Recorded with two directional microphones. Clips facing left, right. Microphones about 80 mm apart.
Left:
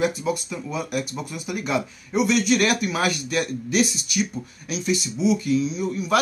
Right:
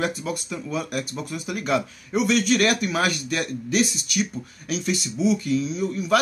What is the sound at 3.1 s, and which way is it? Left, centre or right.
Speech, right.